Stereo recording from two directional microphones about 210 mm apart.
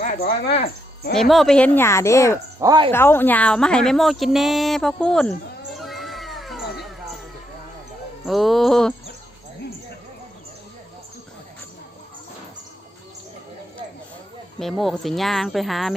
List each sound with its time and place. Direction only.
0.0 s speech: 40° left (ahead or behind)
1.1 s speech: centre (ahead or behind)
2.6 s speech: 20° right (ahead or behind)
2.9 s a woman's voice: 10° left (ahead or behind)
5.7 s a sound: centre (ahead or behind)
8.2 s a woman's voice: centre (ahead or behind)
14.6 s a woman's voice: centre (ahead or behind)